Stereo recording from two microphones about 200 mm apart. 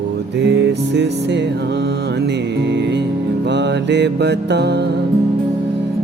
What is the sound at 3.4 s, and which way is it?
Mantra, 60° right (ahead or behind).